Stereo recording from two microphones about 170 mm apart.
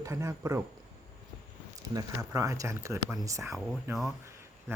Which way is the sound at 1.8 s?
20° right (ahead or behind).